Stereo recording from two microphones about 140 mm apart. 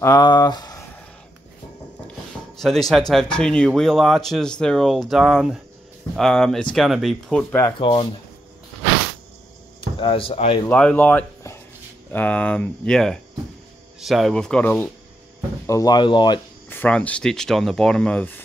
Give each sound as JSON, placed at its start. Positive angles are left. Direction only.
{"t": 0.0, "sound": "speech", "side_deg": 30}
{"t": 2.6, "sound": "speech", "side_deg": 0}
{"t": 7.8, "sound": "speech", "side_deg": 35}
{"t": 9.9, "sound": "speech", "side_deg": 40}
{"t": 10.7, "sound": "speech", "side_deg": 10}
{"t": 15.6, "sound": "speech", "side_deg": 25}
{"t": 16.6, "sound": "speech", "side_deg": 15}